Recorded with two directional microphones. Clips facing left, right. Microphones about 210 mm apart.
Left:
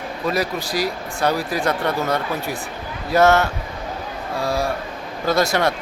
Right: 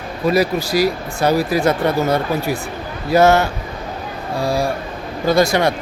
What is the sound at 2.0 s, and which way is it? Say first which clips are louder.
Speech: right 5 dB; 40° right (ahead or behind).